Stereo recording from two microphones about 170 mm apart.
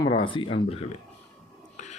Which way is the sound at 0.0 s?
30° left (ahead or behind).